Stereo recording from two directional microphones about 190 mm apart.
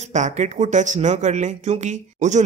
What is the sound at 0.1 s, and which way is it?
Speech, 40° right (ahead or behind).